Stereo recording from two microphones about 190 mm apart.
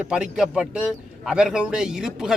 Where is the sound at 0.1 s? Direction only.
5° right (ahead or behind).